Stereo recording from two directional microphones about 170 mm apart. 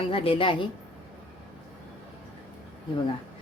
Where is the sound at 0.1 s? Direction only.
30° left (ahead or behind).